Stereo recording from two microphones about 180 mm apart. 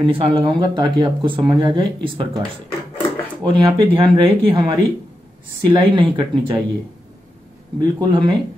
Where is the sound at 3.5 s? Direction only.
25° right (ahead or behind).